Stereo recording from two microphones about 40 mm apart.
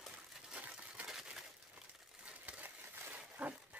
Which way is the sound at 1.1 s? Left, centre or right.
Centre.